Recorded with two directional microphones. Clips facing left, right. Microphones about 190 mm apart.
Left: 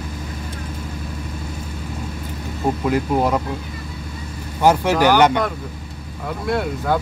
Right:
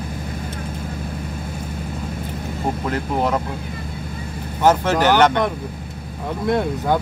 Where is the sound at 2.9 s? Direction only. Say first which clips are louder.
Left 3 dB; 10° left (ahead or behind).